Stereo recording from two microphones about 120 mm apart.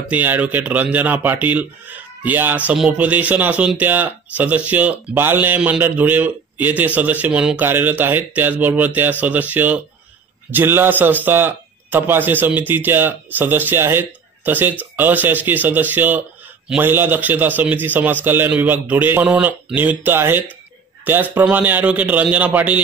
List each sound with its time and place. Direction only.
0.1 s speech: 15° right (ahead or behind)